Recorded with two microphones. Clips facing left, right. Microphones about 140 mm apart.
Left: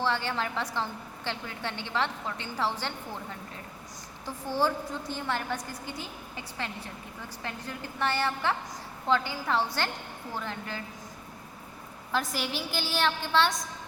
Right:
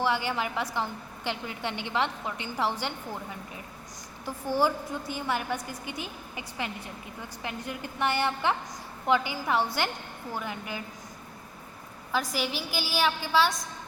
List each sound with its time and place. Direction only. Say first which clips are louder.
0.0 s a woman's voice: right 2 dB; 10° right (ahead or behind)
12.1 s a woman's voice: right 1 dB; centre (ahead or behind)